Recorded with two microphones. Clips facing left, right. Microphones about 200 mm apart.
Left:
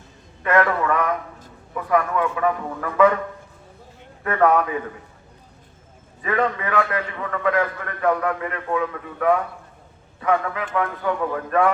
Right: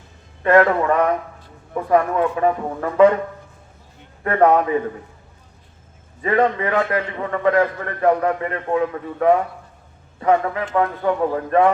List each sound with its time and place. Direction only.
0.4 s a man's voice: 30° right (ahead or behind)
4.2 s a man's voice: 30° right (ahead or behind)
6.6 s a man's voice: 25° right (ahead or behind)